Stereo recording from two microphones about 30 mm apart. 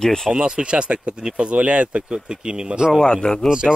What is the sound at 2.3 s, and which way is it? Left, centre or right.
Speech, right.